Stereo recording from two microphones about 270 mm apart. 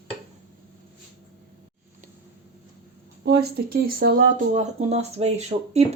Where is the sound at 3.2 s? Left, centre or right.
Right.